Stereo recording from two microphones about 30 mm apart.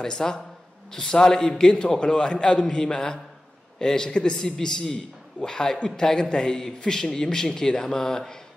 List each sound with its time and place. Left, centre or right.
0.0 s a man's voice: centre
4.4 s a man's voice: centre